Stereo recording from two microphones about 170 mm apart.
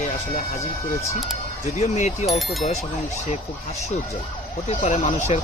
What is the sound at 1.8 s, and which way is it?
Speech, 40° left (ahead or behind).